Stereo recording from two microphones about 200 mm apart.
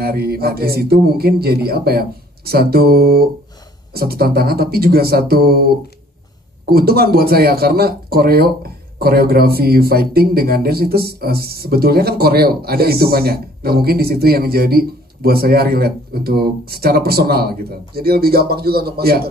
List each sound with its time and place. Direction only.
0.0 s a man's voice: 50° right (ahead or behind)